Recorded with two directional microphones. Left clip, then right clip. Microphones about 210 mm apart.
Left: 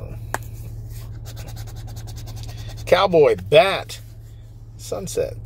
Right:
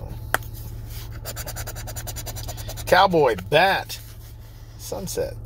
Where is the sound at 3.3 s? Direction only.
40° left (ahead or behind).